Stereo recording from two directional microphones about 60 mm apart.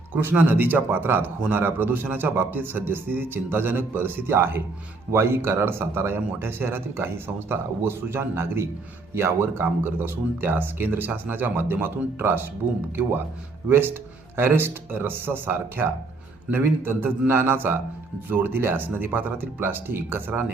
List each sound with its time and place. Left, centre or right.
0.1 s speech: right